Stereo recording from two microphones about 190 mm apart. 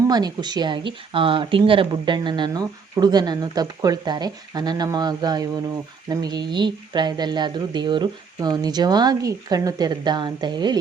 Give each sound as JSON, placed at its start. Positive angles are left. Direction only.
{"t": 0.1, "sound": "speech", "side_deg": -20}